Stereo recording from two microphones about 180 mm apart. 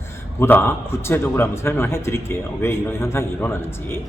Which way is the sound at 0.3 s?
10° left (ahead or behind).